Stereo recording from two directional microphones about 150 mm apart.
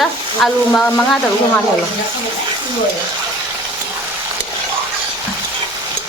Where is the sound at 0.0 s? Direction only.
Centre (ahead or behind).